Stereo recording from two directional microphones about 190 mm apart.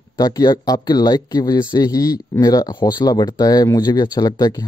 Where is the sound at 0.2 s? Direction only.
20° left (ahead or behind).